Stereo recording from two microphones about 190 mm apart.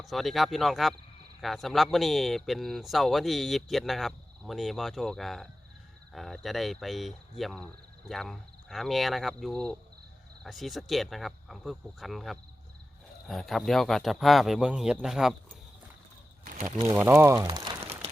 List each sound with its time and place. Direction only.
0.0 s speech: centre (ahead or behind)
16.4 s a sound: 45° right (ahead or behind)
16.7 s speech: 15° right (ahead or behind)